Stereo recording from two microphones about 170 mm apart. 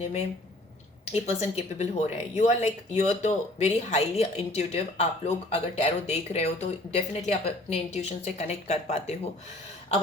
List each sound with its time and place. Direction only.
0.0 s speech: 40° left (ahead or behind)